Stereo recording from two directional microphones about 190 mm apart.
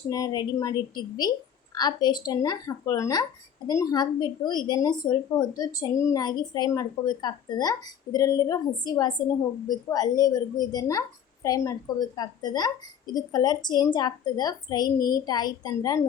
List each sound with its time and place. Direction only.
0.1 s a woman's voice: 20° left (ahead or behind)